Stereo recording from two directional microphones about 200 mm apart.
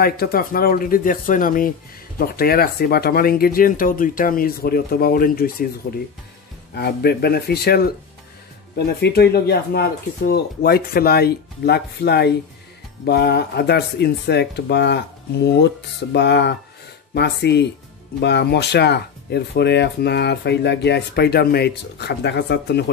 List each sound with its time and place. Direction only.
0.0 s speech: 50° left (ahead or behind)
6.7 s speech: 55° left (ahead or behind)